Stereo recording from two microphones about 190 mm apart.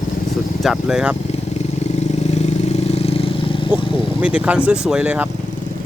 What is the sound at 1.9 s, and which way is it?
Vehicle, 35° left (ahead or behind).